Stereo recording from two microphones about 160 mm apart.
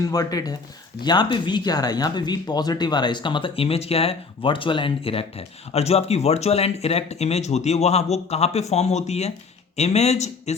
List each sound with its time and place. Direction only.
0.0 s a man's voice: 25° left (ahead or behind); by 10.5 s 45° left (ahead or behind)